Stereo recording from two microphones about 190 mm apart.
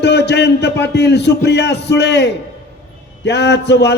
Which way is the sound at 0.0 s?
60° left (ahead or behind).